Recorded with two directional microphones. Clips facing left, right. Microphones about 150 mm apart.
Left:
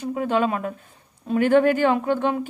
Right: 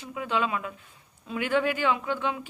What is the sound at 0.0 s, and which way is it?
Speech, 45° left (ahead or behind).